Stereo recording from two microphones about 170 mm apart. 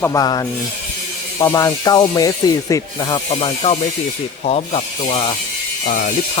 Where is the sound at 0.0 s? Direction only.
20° left (ahead or behind); by 5.2 s 35° left (ahead or behind).